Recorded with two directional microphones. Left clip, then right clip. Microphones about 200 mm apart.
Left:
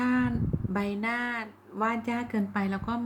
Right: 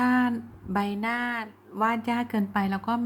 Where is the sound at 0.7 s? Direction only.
15° right (ahead or behind).